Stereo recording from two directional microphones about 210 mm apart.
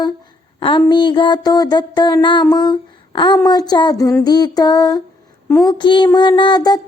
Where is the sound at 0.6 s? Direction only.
20° left (ahead or behind).